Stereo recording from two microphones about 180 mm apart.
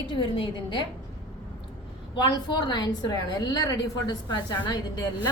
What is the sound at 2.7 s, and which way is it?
A woman's voice, 25° left (ahead or behind).